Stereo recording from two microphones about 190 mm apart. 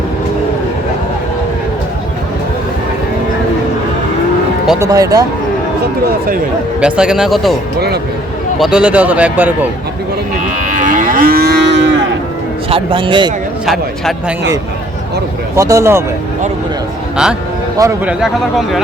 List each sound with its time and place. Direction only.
4.8 s speech: 20° right (ahead or behind)
6.7 s speech: 5° right (ahead or behind)
8.5 s a man's voice: centre (ahead or behind)
10.6 s moo: 40° right (ahead or behind); by 11.9 s 65° right (ahead or behind)
12.7 s speech: 25° right (ahead or behind)
13.7 s speech: centre (ahead or behind)
15.5 s a man's voice: 15° right (ahead or behind)
17.7 s a man's voice: 10° right (ahead or behind)